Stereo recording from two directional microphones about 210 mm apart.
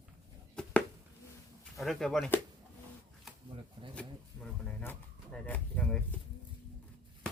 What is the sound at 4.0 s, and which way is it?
Speech, 5° left (ahead or behind).